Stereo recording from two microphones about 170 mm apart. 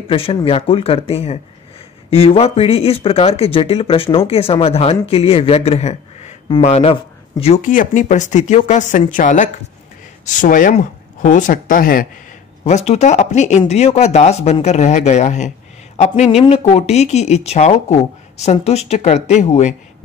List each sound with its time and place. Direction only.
0.1 s speech: 30° left (ahead or behind); by 12.1 s 55° left (ahead or behind)
12.6 s speech: 40° left (ahead or behind)